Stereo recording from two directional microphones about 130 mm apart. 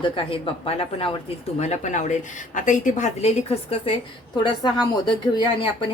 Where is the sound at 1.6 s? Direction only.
60° left (ahead or behind).